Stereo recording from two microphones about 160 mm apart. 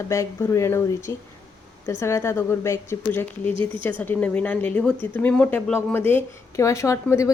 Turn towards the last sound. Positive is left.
turn(degrees=20)  # may be behind; listen again after turning